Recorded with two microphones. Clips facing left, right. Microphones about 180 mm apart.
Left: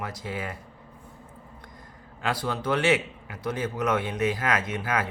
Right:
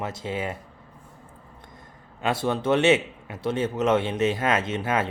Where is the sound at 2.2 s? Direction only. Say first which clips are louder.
Right 4 dB; 25° right (ahead or behind).